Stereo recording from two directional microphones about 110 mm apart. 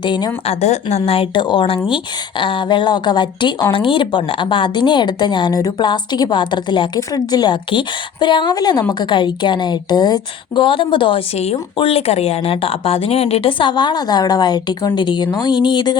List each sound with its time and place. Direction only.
0.0 s a woman's voice: 45° left (ahead or behind)
0.4 s a woman's voice: 80° left; by 11.2 s 50° left (ahead or behind)
11.8 s a woman's voice: 60° left (ahead or behind); by 16.0 s 45° left (ahead or behind)